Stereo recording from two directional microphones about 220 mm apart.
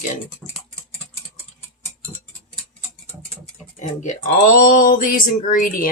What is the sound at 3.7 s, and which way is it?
Speech, 35° left (ahead or behind).